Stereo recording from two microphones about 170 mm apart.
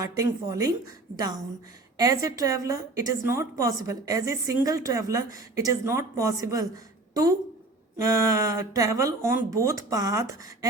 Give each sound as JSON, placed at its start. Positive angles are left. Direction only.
{"t": 0.0, "sound": "a woman's voice", "side_deg": -20}
{"t": 2.0, "sound": "a woman's voice", "side_deg": -20}
{"t": 7.9, "sound": "a woman's voice", "side_deg": -20}